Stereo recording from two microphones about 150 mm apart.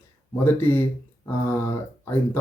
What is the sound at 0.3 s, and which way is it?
Speech, 15° left (ahead or behind).